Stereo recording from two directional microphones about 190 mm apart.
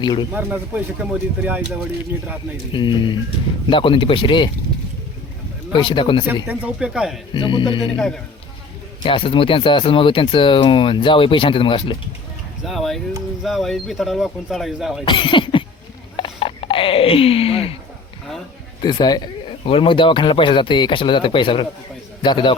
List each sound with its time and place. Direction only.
0.0 s speech: 25° left (ahead or behind)
0.3 s speech: 10° right (ahead or behind)
2.7 s speech: 25° left (ahead or behind)
5.7 s speech: 25° left (ahead or behind)
6.2 s speech: 10° right (ahead or behind)
7.3 s speech: 25° left (ahead or behind)
7.9 s speech: 5° left (ahead or behind)
9.0 s speech: 30° left (ahead or behind)
12.6 s speech: centre (ahead or behind)
15.0 s speech: 25° left (ahead or behind)
16.1 s a sound: 30° left (ahead or behind)
18.8 s speech: 25° left (ahead or behind)